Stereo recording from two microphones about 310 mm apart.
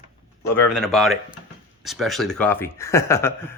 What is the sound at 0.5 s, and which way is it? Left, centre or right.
Speech, centre.